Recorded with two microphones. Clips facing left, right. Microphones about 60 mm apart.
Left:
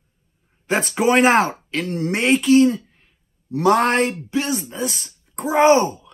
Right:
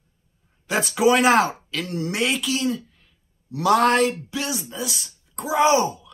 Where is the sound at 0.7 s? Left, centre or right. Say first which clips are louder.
Even; left.